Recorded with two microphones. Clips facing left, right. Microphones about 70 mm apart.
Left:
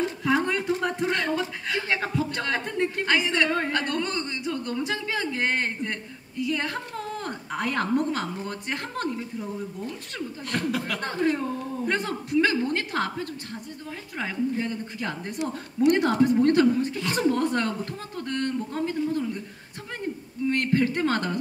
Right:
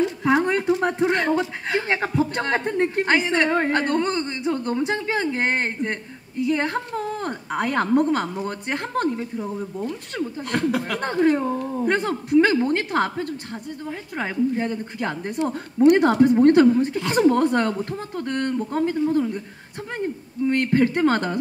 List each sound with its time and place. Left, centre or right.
0.2 s speech: right
20.4 s speech: right